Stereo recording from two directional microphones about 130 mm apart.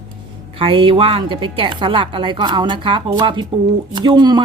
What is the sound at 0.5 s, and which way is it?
Speech, 45° right (ahead or behind).